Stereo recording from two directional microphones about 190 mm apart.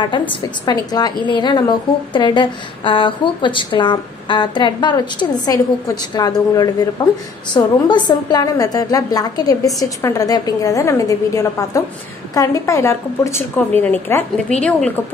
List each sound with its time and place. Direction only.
0.3 s a woman's voice: 20° left (ahead or behind); by 14.9 s 5° left (ahead or behind)